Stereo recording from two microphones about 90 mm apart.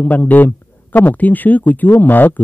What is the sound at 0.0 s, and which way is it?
Speech, 20° left (ahead or behind).